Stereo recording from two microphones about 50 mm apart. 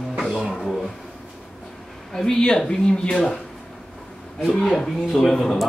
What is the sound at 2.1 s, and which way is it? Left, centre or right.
Speech, centre.